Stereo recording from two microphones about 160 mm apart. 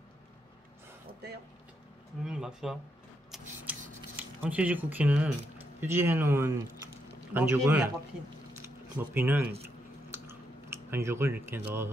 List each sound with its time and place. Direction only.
2.2 s speech: 5° right (ahead or behind)
3.7 s scissors: 10° right (ahead or behind)
4.2 s a man's voice: 10° right (ahead or behind)
9.1 s a man's voice: 10° right (ahead or behind)
10.1 s chewing: 15° right (ahead or behind)